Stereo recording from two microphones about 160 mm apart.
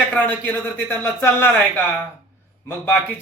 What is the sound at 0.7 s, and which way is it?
Speech, 15° left (ahead or behind).